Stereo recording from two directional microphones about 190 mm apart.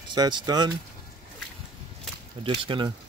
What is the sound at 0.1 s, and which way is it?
Speech, 20° right (ahead or behind).